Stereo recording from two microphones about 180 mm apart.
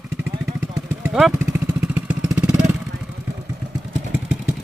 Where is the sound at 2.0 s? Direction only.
10° right (ahead or behind).